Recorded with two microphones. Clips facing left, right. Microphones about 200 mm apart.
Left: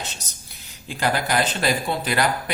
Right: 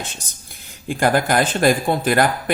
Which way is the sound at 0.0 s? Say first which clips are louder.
Right 2 dB; 50° right (ahead or behind).